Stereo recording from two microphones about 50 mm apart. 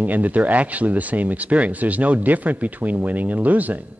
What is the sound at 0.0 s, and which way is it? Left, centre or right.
A man's voice, right.